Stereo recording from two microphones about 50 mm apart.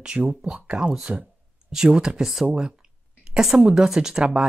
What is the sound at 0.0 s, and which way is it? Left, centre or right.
Speech, centre.